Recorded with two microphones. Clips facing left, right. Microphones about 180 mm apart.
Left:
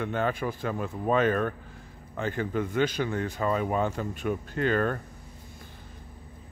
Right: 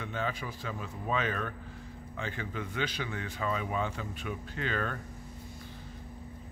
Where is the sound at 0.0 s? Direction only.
55° left (ahead or behind).